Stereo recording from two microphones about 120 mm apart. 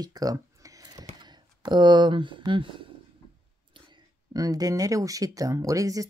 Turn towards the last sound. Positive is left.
turn(degrees=-30)  # may be behind; listen again after turning